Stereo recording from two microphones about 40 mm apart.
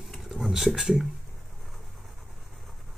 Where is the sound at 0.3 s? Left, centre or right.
Centre.